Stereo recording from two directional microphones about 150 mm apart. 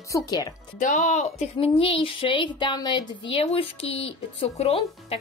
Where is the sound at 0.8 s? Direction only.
55° left (ahead or behind).